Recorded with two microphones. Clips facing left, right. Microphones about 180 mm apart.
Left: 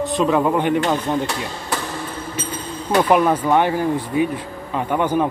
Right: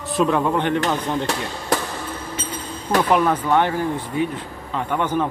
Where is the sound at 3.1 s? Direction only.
10° left (ahead or behind).